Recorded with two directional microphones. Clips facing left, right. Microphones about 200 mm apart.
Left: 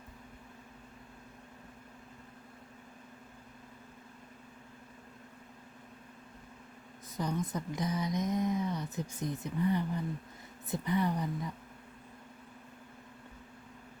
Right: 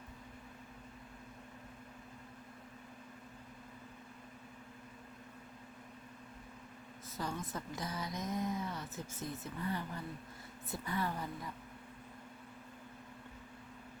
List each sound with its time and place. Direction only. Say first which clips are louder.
7.2 s a woman's voice: left 6 dB; 20° left (ahead or behind)